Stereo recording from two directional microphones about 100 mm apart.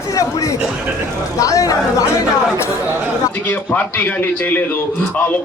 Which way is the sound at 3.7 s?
15° left (ahead or behind).